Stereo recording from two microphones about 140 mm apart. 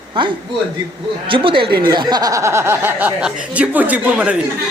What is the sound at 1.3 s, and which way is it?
Speech, 40° right (ahead or behind).